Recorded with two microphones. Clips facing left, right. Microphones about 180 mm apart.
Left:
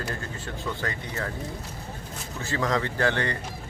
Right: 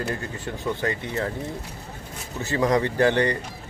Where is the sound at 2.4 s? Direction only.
20° right (ahead or behind).